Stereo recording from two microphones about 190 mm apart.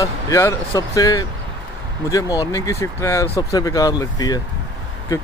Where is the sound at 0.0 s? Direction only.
15° left (ahead or behind).